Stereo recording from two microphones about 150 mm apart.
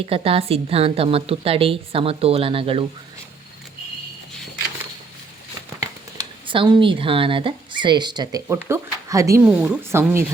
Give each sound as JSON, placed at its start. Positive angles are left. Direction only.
{"t": 0.0, "sound": "a woman's voice", "side_deg": -40}
{"t": 6.5, "sound": "a woman's voice", "side_deg": -35}
{"t": 8.5, "sound": "speech", "side_deg": -15}
{"t": 9.4, "sound": "a woman's voice", "side_deg": -10}